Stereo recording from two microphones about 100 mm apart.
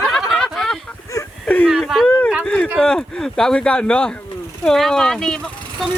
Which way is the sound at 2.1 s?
15° left (ahead or behind).